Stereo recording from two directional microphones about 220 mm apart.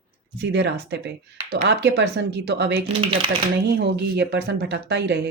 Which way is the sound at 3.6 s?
45° right (ahead or behind).